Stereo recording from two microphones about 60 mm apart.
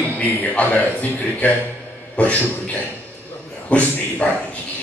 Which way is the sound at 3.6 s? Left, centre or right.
Left.